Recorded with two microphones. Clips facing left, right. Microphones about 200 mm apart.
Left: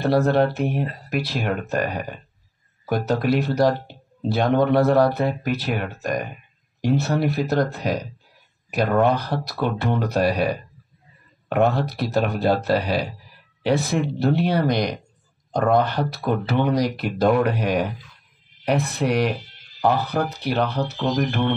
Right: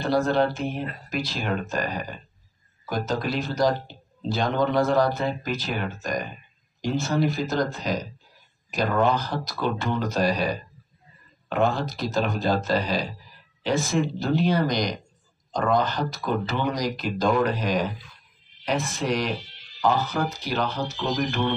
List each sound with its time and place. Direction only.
0.0 s speech: 60° left (ahead or behind)